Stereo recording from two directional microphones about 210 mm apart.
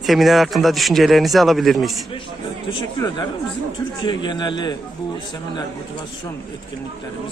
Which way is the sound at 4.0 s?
20° left (ahead or behind).